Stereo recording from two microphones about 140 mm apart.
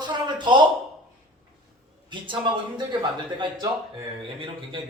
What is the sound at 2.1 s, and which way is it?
Speech, 35° right (ahead or behind).